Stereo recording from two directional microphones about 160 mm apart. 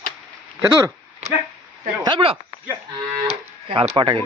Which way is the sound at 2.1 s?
30° right (ahead or behind).